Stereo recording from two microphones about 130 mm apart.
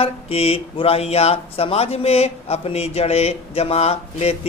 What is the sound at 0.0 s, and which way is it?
Speech, 50° left (ahead or behind).